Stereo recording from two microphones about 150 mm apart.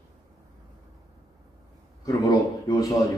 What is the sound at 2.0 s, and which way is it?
A man's voice, 25° left (ahead or behind).